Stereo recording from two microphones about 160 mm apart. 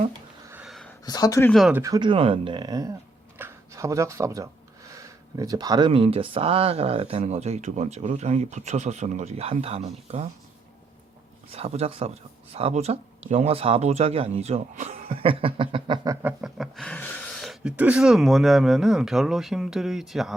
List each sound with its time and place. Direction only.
0.5 s a sound: centre (ahead or behind)
1.0 s speech: 25° left (ahead or behind)
1.5 s speech: centre (ahead or behind)
1.7 s speech: 20° right (ahead or behind)
3.3 s a sound: 15° right (ahead or behind)
4.9 s speech: 20° right (ahead or behind); by 9.9 s 40° right (ahead or behind)
11.5 s speech: 40° right (ahead or behind)
16.4 s speech: centre (ahead or behind)